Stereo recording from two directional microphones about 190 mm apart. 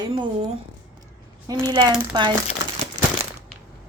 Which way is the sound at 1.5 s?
20° right (ahead or behind).